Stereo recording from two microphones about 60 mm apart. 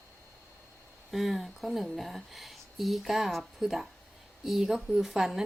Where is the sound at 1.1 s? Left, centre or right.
Centre.